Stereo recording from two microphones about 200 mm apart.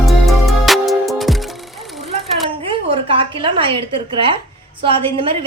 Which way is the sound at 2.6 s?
30° right (ahead or behind).